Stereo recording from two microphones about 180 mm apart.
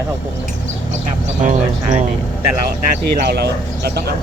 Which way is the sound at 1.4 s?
40° right (ahead or behind).